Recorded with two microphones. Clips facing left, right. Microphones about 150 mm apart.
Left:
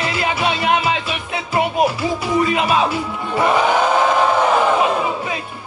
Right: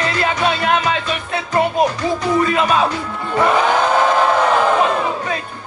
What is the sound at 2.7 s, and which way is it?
Speech, 10° left (ahead or behind).